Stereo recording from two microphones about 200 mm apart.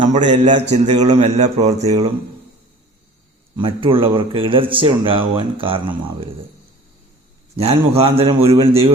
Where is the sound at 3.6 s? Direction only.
25° right (ahead or behind).